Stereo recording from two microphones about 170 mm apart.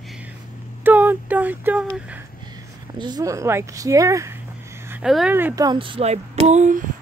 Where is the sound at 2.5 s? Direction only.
25° right (ahead or behind).